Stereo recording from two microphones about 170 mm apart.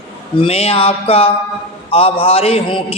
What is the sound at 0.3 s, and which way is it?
A man's voice, 35° left (ahead or behind).